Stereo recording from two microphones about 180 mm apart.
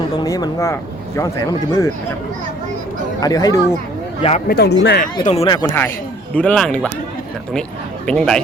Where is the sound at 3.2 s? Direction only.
20° left (ahead or behind).